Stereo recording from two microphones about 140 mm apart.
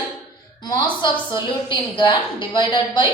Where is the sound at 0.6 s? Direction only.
30° left (ahead or behind).